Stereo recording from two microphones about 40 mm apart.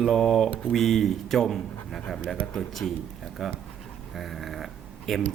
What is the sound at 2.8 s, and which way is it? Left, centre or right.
Speech, centre.